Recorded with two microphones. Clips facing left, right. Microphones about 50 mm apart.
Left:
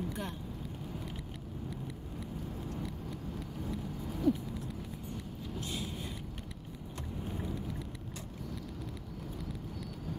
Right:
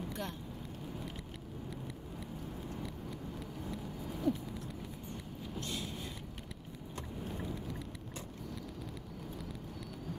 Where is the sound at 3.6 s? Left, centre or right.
Centre.